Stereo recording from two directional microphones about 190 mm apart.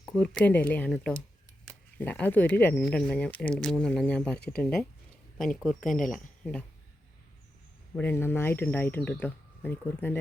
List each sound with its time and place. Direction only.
0.0 s speech: 5° left (ahead or behind)
6.0 s speech: 45° left (ahead or behind)
6.4 s speech: 5° left (ahead or behind)
7.9 s speech: 10° left (ahead or behind)